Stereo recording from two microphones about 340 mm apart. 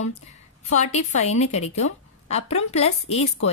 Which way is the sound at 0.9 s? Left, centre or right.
Centre.